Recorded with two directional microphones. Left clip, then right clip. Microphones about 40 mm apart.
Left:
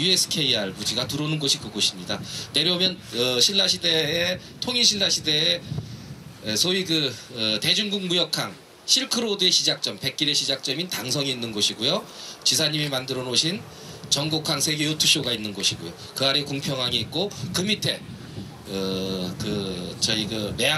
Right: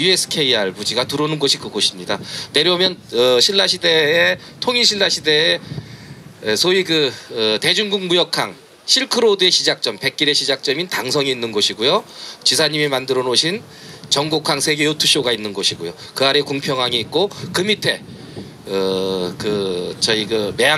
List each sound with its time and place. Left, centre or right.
0.0 s speech: right